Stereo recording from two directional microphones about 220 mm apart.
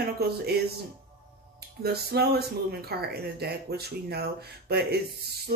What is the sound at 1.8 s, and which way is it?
Speech, 45° right (ahead or behind).